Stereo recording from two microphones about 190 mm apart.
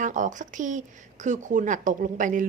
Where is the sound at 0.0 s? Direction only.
40° right (ahead or behind).